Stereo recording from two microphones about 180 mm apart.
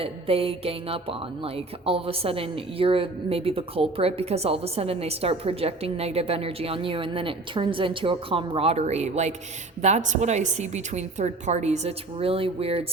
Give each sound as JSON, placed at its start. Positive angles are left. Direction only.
{"t": 0.0, "sound": "speech", "side_deg": -30}